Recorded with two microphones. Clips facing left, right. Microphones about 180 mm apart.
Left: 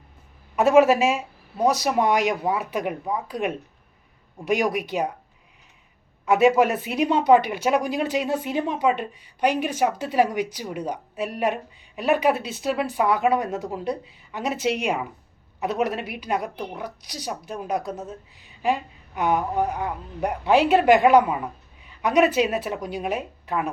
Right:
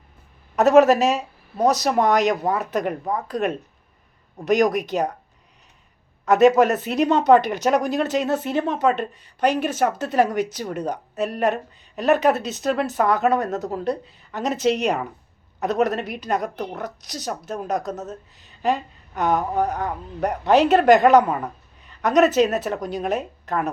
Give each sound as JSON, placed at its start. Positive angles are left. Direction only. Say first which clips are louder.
{"t": 0.8, "sound": "speech", "louder": "right 2 dB", "side_deg": -40}
{"t": 1.6, "sound": "speech", "louder": "right 2 dB", "side_deg": 10}
{"t": 6.4, "sound": "speech", "louder": "right 3 dB", "side_deg": 10}